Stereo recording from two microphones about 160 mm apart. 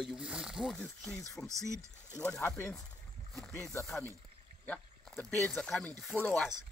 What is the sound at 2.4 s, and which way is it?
Speech, 15° left (ahead or behind).